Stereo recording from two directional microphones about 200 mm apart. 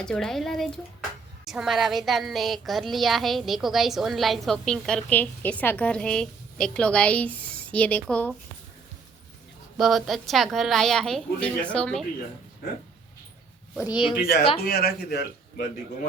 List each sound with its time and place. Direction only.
0.0 s child singing: 5° left (ahead or behind)
9.7 s child singing: centre (ahead or behind)
14.2 s a man's voice: 50° left (ahead or behind)